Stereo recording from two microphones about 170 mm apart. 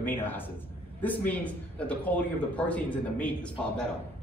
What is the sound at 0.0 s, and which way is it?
Speech, 10° left (ahead or behind).